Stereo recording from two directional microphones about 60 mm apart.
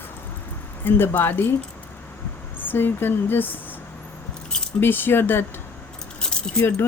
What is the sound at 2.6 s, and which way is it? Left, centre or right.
Speech, left.